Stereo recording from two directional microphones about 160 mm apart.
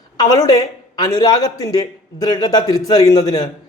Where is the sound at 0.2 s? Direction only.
20° left (ahead or behind).